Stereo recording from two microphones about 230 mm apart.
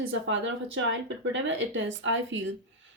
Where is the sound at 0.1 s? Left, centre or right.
Right.